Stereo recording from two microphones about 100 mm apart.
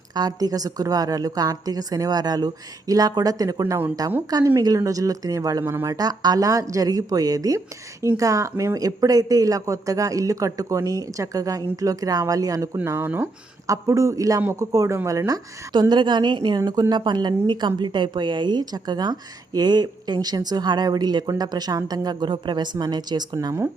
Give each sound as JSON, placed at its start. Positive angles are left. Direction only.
{"t": 0.1, "sound": "a woman's voice", "side_deg": -40}
{"t": 12.7, "sound": "speech", "side_deg": -20}
{"t": 13.7, "sound": "a woman's voice", "side_deg": -30}
{"t": 15.3, "sound": "a woman's voice", "side_deg": -45}